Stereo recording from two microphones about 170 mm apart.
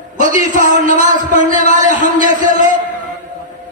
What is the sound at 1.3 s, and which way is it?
A man's voice, 50° right (ahead or behind).